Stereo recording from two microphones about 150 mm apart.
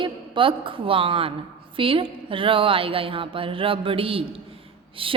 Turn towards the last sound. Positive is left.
turn(degrees=-35)  # may be behind; listen again after turning